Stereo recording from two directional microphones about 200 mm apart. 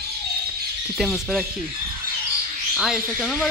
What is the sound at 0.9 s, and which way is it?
Speech, centre (ahead or behind).